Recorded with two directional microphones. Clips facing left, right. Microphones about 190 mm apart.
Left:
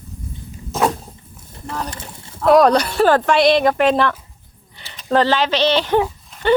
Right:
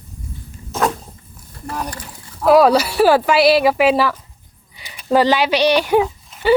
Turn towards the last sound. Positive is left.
turn(degrees=-5)  # may be behind; listen again after turning